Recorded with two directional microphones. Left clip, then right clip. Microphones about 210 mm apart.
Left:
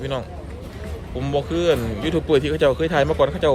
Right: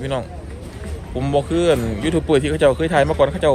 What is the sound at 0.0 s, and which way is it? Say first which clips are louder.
Speech: right 3 dB; 15° left (ahead or behind).